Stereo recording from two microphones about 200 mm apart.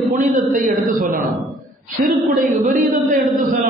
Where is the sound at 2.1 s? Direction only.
45° right (ahead or behind).